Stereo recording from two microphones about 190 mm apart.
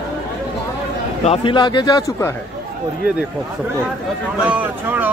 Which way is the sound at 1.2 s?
30° left (ahead or behind).